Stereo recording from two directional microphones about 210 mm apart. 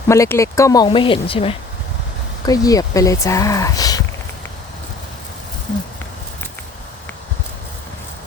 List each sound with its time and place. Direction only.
0.1 s speech: 15° left (ahead or behind)